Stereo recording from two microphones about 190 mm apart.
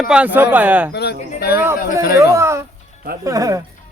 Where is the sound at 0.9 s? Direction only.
60° left (ahead or behind).